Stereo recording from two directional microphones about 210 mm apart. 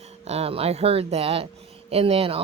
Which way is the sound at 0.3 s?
30° right (ahead or behind).